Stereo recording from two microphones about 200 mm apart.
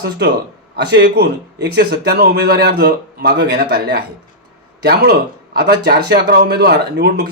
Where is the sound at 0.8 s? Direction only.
55° right (ahead or behind).